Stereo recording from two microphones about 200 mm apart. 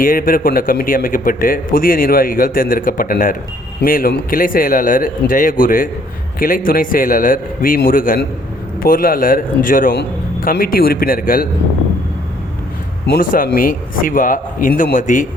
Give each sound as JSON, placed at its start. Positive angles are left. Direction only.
{"t": 0.0, "sound": "a man's voice", "side_deg": 45}
{"t": 9.9, "sound": "a man's voice", "side_deg": 55}
{"t": 13.1, "sound": "a man's voice", "side_deg": 45}